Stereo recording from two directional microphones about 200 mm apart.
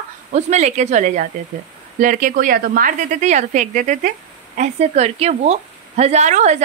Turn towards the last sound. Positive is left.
turn(degrees=-35)  # may be behind; listen again after turning